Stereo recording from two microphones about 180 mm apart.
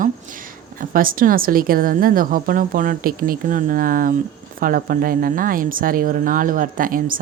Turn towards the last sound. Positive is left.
turn(degrees=-50)  # may be behind; listen again after turning